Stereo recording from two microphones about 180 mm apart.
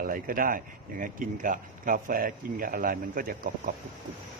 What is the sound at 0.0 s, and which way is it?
Speech, 50° right (ahead or behind).